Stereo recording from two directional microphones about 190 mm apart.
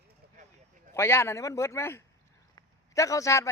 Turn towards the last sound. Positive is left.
turn(degrees=15)  # may be behind; listen again after turning